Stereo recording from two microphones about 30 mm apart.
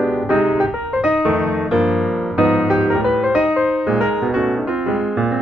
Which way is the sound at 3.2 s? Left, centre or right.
Right.